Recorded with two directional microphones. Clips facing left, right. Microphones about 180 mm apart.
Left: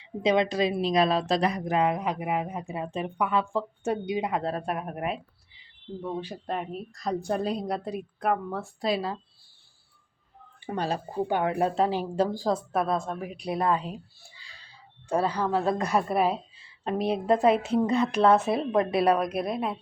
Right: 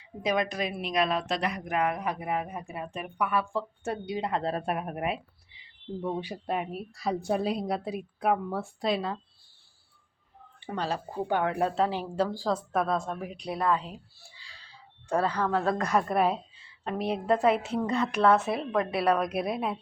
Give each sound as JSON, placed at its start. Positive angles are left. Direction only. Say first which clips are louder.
{"t": 0.0, "sound": "a woman's voice", "louder": "left 5 dB", "side_deg": 25}
{"t": 4.4, "sound": "speech", "louder": "even", "side_deg": -5}
{"t": 6.0, "sound": "speech", "louder": "right 1 dB", "side_deg": -15}
{"t": 10.7, "sound": "a woman's voice", "louder": "left 2 dB", "side_deg": 15}
{"t": 12.7, "sound": "a woman's voice", "louder": "left 1 dB", "side_deg": 0}
{"t": 16.8, "sound": "a woman's voice", "louder": "left 3 dB", "side_deg": 20}
{"t": 19.1, "sound": "speech", "louder": "left 1 dB", "side_deg": 0}